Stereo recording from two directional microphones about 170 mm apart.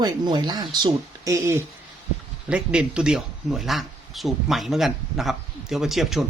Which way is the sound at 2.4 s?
5° right (ahead or behind).